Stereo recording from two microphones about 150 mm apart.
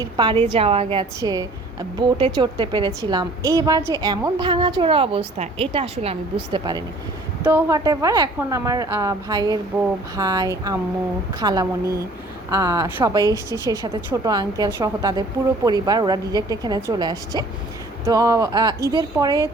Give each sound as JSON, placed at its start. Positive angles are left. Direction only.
{"t": 0.0, "sound": "a woman's voice", "side_deg": -30}
{"t": 1.2, "sound": "a woman's voice", "side_deg": -25}
{"t": 6.5, "sound": "a woman's voice", "side_deg": -30}
{"t": 7.4, "sound": "a woman's voice", "side_deg": -15}